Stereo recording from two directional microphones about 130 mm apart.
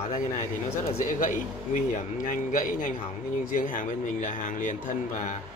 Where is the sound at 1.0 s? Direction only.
80° left.